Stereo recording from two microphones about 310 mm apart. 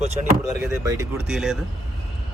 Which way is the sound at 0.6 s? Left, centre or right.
Centre.